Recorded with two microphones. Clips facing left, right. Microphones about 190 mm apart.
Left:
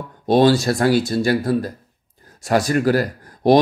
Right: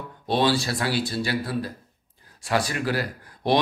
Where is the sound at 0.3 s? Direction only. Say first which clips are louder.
Left 8 dB; 45° left (ahead or behind).